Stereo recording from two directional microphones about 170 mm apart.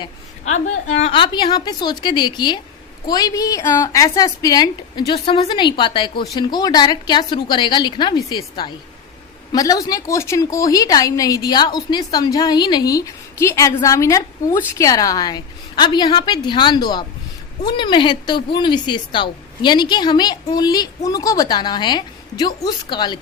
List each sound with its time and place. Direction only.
0.4 s a woman's voice: 45° left (ahead or behind); by 23.2 s 25° left (ahead or behind)